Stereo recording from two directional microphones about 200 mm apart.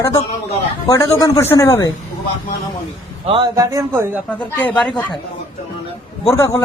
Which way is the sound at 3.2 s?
25° right (ahead or behind).